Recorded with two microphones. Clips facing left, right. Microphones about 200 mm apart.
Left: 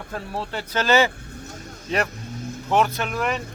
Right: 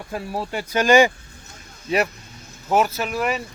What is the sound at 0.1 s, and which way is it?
Speech, 10° right (ahead or behind).